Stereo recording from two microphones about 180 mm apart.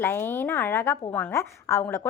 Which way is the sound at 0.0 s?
10° left (ahead or behind).